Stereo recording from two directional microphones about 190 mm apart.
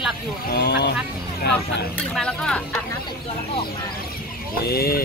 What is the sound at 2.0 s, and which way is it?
Speech, 5° left (ahead or behind).